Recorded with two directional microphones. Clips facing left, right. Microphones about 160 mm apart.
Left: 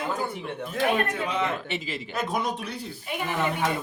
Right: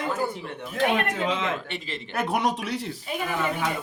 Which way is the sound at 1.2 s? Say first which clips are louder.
Right 1 dB; 90° right.